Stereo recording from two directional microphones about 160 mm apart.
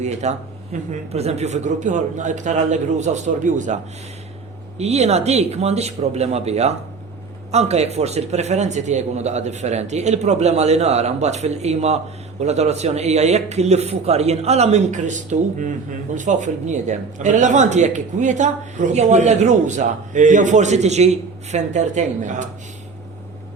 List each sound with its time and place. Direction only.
0.0 s speech: 45° right (ahead or behind)
4.8 s speech: 40° right (ahead or behind)